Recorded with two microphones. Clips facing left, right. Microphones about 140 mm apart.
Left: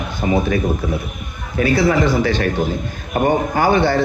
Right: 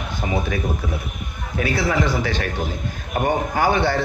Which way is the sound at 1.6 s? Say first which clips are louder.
Left 6 dB; 10° right (ahead or behind).